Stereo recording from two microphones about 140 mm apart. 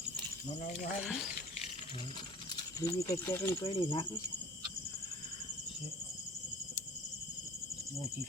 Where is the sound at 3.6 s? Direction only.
40° left (ahead or behind).